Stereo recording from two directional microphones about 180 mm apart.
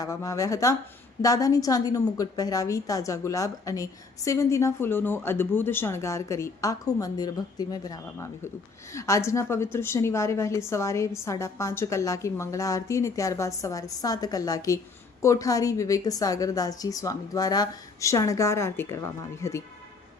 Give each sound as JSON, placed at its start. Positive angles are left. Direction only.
{"t": 0.0, "sound": "a woman's voice", "side_deg": 20}